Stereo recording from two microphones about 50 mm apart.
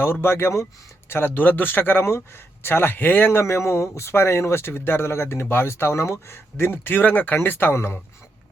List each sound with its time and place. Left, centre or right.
0.0 s speech: left
1.1 s speech: left
3.9 s speech: left
7.7 s speech: left